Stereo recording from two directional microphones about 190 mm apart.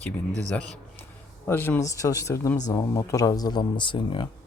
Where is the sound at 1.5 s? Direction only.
10° left (ahead or behind).